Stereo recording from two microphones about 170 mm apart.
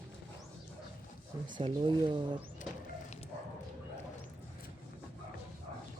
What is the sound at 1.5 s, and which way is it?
Speech, 30° right (ahead or behind).